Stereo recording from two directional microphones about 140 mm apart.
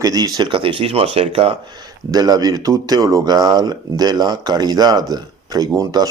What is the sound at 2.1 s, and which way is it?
Speech, 25° right (ahead or behind).